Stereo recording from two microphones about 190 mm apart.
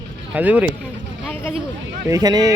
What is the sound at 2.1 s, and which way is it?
Speech, 20° right (ahead or behind).